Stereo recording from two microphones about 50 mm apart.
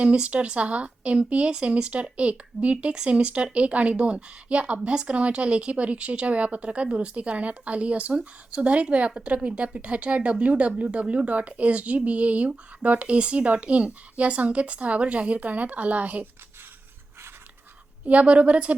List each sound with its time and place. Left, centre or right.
0.0 s speech: right
18.0 s speech: right